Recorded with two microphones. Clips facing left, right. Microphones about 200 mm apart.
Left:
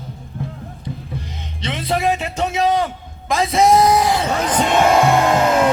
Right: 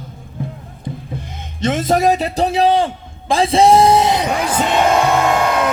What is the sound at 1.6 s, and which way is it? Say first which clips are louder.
A man's voice: right 6 dB; 45° right (ahead or behind).